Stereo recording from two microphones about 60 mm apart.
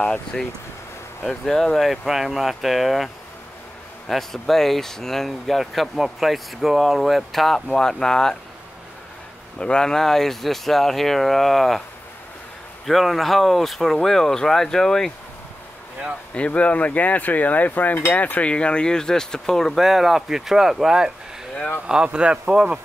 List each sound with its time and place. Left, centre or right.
0.0 s speech: centre
1.5 s speech: centre
1.9 s speech: centre
4.1 s speech: centre
9.6 s speech: centre
12.8 s speech: centre
16.3 s a sound: left
18.1 s speech: left; by 22.8 s centre